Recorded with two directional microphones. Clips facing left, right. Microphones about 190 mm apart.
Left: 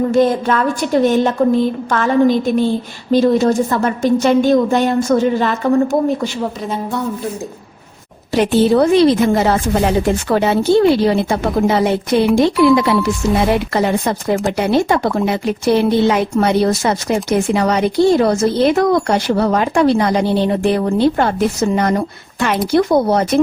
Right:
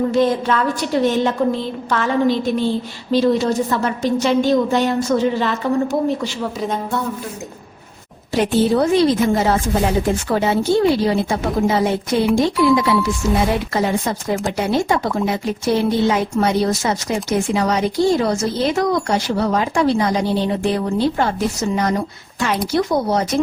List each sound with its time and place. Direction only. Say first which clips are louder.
0.1 s a woman's voice: left 3 dB; 50° left (ahead or behind)
8.4 s a woman's voice: left 4 dB; 70° left (ahead or behind)